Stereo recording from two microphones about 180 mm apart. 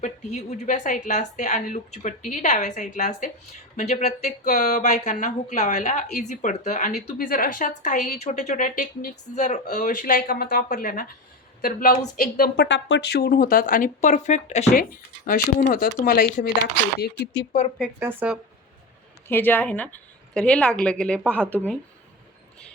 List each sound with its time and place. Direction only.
0.0 s speech: 40° left (ahead or behind); by 12.6 s 55° left (ahead or behind)
12.6 s speech: 90° left; by 16.5 s 55° left (ahead or behind)
18.0 s speech: 10° right (ahead or behind)
19.3 s a woman's voice: 10° left (ahead or behind)